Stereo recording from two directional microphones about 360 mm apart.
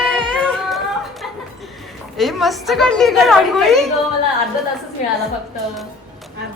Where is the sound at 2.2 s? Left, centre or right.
Centre.